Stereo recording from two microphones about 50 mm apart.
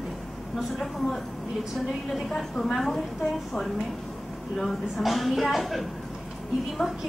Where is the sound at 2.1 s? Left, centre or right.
Centre.